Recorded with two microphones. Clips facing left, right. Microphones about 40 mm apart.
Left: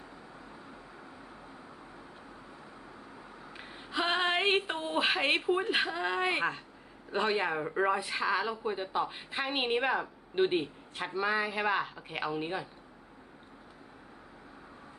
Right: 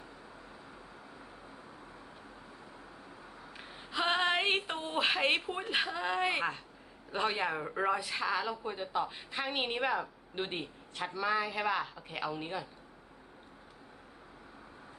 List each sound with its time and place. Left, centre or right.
3.6 s speech: centre